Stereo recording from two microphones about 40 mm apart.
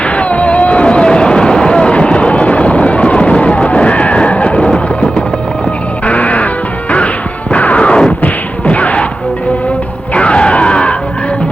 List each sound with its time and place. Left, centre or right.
0.2 s a sound: left
4.9 s music: left
6.1 s music: left
7.5 s smash: left
8.2 s whack: left
10.2 s a sound: left